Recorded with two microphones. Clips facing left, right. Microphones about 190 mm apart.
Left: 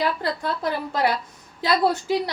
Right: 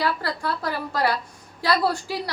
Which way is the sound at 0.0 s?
20° left (ahead or behind).